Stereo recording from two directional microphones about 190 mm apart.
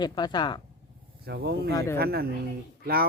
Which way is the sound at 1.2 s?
60° right (ahead or behind).